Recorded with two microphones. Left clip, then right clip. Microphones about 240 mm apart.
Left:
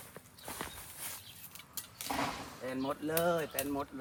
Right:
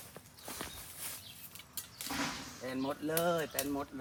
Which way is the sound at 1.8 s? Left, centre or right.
Centre.